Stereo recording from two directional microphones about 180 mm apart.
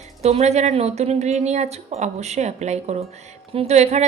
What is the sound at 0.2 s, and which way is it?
A woman's voice, 35° right (ahead or behind).